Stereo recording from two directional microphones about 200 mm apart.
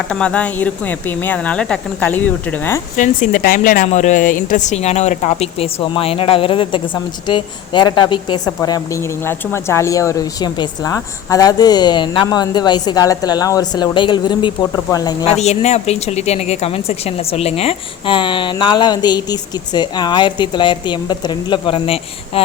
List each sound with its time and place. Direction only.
0.1 s speech: 5° left (ahead or behind)
3.0 s a woman's voice: 40° left (ahead or behind); by 15.3 s 20° left (ahead or behind)
15.4 s a woman's voice: 35° left (ahead or behind)